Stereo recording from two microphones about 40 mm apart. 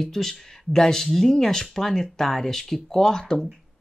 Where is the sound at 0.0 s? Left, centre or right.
Centre.